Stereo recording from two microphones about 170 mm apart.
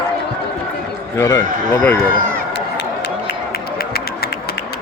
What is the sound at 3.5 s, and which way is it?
Run, 65° left (ahead or behind).